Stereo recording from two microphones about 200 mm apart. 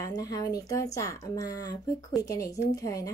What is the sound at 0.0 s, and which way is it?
Speech, 20° left (ahead or behind).